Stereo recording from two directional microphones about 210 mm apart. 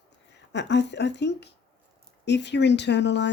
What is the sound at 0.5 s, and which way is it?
Speech, 55° left (ahead or behind).